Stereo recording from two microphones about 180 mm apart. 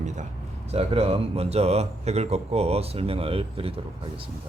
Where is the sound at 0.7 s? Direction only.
35° right (ahead or behind).